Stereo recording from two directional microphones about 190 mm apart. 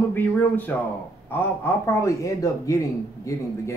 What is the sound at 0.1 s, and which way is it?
A man's voice, 10° left (ahead or behind).